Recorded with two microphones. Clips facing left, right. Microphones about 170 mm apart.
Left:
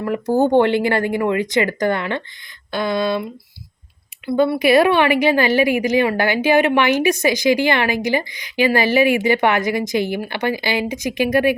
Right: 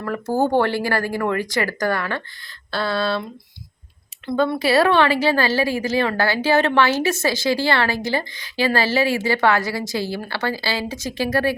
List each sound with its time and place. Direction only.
0.0 s a woman's voice: 20° left (ahead or behind)
4.3 s a woman's voice: 5° left (ahead or behind)